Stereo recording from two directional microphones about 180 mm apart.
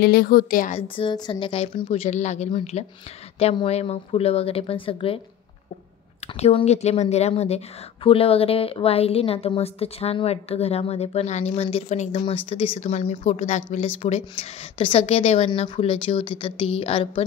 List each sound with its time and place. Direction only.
0.0 s a woman's voice: 60° left (ahead or behind)
0.7 s a woman's voice: 30° left (ahead or behind)
6.2 s a woman's voice: 35° left (ahead or behind)